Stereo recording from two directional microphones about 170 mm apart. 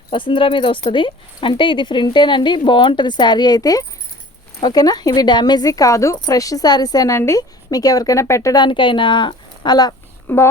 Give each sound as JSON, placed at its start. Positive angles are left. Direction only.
{"t": 0.1, "sound": "speech", "side_deg": 30}